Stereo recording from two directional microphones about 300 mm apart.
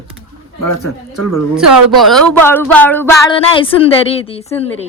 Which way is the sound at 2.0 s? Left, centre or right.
Centre.